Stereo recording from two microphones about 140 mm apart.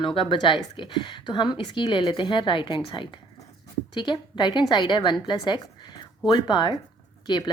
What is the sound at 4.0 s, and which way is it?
A woman's voice, 35° left (ahead or behind).